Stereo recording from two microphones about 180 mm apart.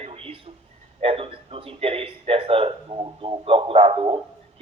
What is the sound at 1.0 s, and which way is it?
Speech, 30° right (ahead or behind).